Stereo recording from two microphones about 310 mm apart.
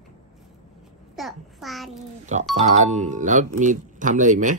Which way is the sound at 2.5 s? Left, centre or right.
Right.